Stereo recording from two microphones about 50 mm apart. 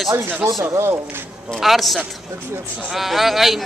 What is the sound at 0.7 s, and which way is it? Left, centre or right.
Speech, right.